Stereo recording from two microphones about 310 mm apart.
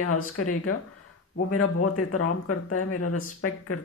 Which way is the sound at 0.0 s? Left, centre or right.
Left.